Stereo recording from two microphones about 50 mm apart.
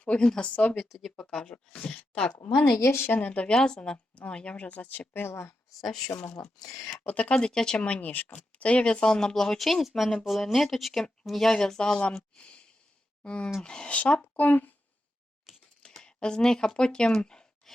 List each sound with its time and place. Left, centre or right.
0.0 s speech: left
2.8 s speech: left
3.1 s speech: left
3.5 s speech: centre; by 5.3 s left
5.3 s speech: left
7.0 s speech: left
7.3 s speech: centre
12.4 s a sound: left
13.2 s speech: left
15.5 s typewriter: centre
15.8 s speech: centre